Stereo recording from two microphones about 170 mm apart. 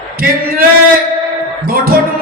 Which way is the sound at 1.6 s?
60° right (ahead or behind).